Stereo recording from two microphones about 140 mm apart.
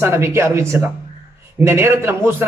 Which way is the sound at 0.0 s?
20° right (ahead or behind).